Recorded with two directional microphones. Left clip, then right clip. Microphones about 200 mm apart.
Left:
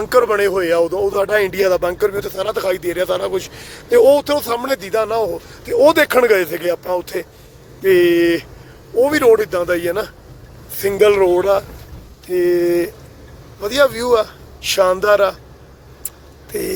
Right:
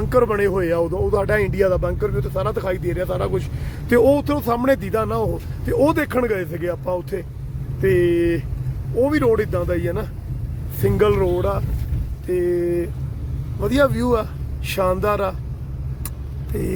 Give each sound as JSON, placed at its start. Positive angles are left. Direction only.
{"t": 0.0, "sound": "speech", "side_deg": 10}
{"t": 5.7, "sound": "speech", "side_deg": 15}
{"t": 13.6, "sound": "speech", "side_deg": 5}